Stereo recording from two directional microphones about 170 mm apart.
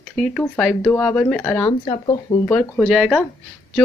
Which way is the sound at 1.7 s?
30° left (ahead or behind).